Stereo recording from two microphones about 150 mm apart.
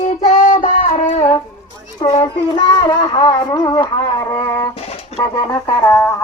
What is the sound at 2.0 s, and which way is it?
A child's voice, 35° left (ahead or behind).